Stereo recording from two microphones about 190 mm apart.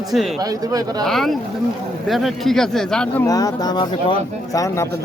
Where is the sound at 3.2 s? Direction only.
20° left (ahead or behind).